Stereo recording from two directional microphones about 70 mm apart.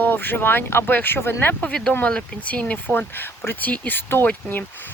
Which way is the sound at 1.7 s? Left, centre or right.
Centre.